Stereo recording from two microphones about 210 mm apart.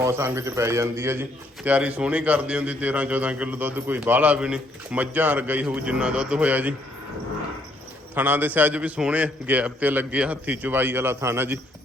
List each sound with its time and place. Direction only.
0.0 s a man's voice: 15° right (ahead or behind)
8.1 s a man's voice: 10° right (ahead or behind)